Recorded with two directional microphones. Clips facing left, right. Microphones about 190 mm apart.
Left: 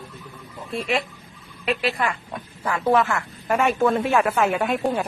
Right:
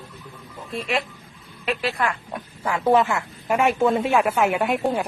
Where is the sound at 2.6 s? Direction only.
15° right (ahead or behind).